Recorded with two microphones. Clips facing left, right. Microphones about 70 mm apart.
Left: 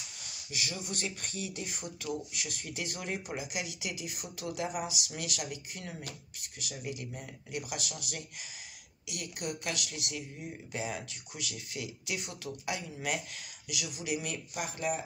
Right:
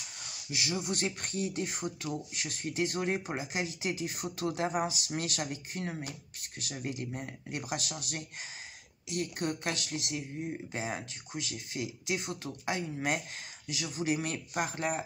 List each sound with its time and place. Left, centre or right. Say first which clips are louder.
0.7 s a woman's voice: right 7 dB; right